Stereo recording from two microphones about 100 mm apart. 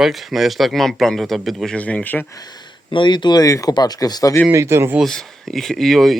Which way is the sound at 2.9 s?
50° left (ahead or behind).